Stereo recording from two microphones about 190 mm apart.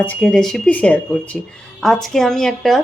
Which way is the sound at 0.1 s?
Centre (ahead or behind).